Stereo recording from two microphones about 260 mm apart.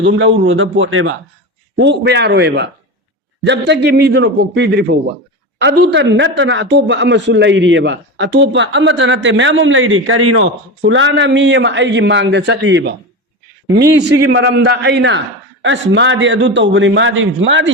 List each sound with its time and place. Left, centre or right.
0.0 s a man's voice: right